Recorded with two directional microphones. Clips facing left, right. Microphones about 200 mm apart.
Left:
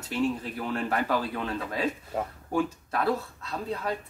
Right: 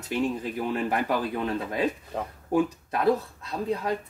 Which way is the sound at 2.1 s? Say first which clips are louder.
Left 1 dB; 5° left (ahead or behind).